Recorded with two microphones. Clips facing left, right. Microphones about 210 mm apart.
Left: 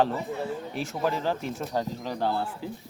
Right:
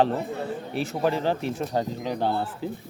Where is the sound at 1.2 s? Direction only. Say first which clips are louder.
Right 3 dB; 20° right (ahead or behind).